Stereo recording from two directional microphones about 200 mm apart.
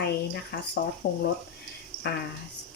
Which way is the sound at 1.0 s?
40° left (ahead or behind).